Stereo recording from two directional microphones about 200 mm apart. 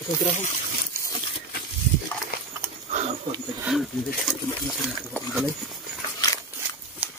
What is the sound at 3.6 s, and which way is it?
Speech, centre (ahead or behind).